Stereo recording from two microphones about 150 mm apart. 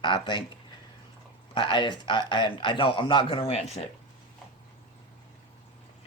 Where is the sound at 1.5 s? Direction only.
30° left (ahead or behind).